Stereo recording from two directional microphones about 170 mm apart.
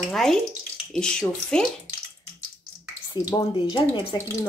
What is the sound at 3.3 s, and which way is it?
Speech, 25° left (ahead or behind).